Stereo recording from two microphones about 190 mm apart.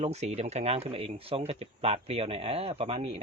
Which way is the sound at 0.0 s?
35° right (ahead or behind).